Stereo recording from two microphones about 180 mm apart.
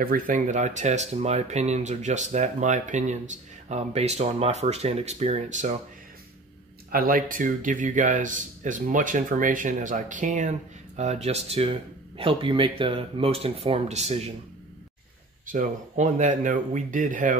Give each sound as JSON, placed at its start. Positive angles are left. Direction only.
{"t": 0.0, "sound": "speech", "side_deg": -50}
{"t": 6.9, "sound": "speech", "side_deg": -55}
{"t": 15.4, "sound": "speech", "side_deg": -45}